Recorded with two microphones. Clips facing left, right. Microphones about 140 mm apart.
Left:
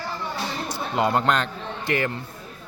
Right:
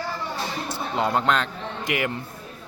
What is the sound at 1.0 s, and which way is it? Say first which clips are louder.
Speech: left 1 dB; centre (ahead or behind).